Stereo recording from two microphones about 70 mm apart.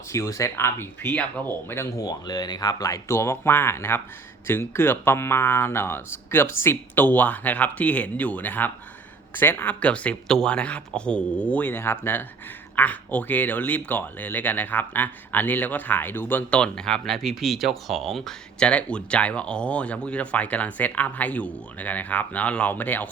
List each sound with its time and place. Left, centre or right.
0.1 s speech: left
2.0 s speech: left
3.1 s speech: left
11.7 s speech: left
12.7 s speech: left
16.5 s speech: centre
18.7 s speech: centre